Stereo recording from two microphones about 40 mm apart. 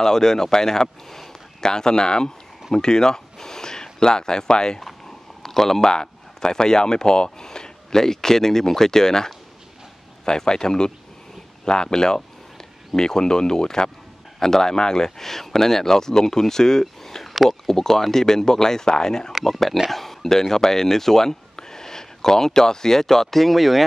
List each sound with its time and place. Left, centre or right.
0.0 s speech: centre
17.5 s speech: centre
19.9 s speech: centre